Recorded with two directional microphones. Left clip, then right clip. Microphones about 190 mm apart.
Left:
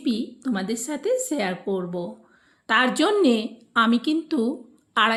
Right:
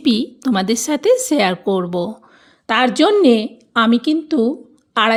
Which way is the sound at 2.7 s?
40° right (ahead or behind).